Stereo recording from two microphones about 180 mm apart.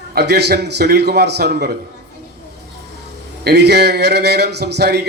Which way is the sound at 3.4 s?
65° right (ahead or behind).